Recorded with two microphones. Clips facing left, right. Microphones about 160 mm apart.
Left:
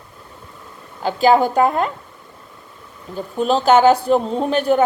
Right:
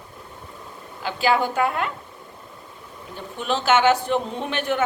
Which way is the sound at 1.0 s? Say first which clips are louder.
Left 7 dB; 40° left (ahead or behind).